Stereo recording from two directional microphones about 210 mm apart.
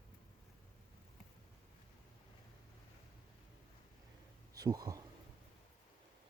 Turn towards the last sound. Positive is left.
turn(degrees=-15)  # may be behind; listen again after turning